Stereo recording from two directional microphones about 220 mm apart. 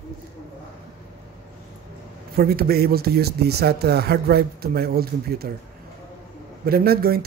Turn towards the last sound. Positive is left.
turn(degrees=-45)  # may be behind; listen again after turning